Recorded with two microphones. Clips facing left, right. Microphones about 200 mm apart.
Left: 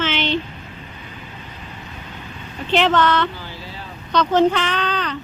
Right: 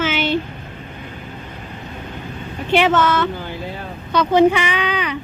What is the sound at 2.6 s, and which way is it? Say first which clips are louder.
Speech: right 1 dB; 10° right (ahead or behind).